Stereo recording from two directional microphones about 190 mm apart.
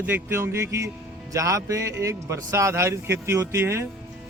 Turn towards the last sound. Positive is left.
turn(degrees=-15)  # may be behind; listen again after turning